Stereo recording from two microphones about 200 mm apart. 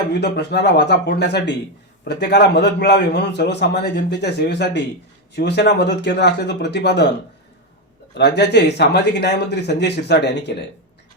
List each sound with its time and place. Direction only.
0.1 s a man's voice: 55° left (ahead or behind)
8.1 s a man's voice: 60° left (ahead or behind)